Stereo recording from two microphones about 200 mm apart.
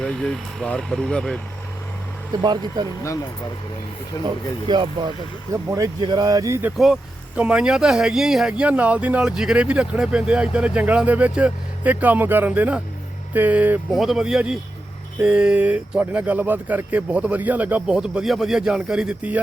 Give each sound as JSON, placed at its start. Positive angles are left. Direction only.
{"t": 0.0, "sound": "speech", "side_deg": 5}
{"t": 2.4, "sound": "speech", "side_deg": -20}
{"t": 4.1, "sound": "speech", "side_deg": 15}
{"t": 4.7, "sound": "speech", "side_deg": -25}